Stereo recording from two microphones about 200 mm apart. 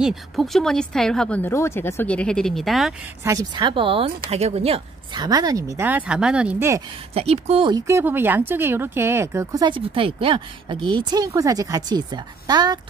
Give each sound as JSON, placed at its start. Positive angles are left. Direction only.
{"t": 0.0, "sound": "speech", "side_deg": 0}
{"t": 3.3, "sound": "speech", "side_deg": -20}
{"t": 7.2, "sound": "speech", "side_deg": -30}